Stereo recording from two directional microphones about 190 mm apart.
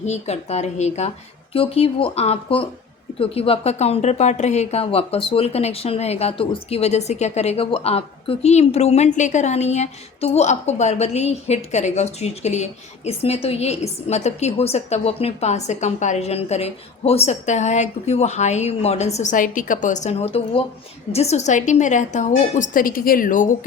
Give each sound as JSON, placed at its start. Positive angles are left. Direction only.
{"t": 0.0, "sound": "a woman's voice", "side_deg": 35}